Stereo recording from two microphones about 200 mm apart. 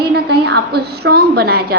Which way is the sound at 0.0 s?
55° right (ahead or behind).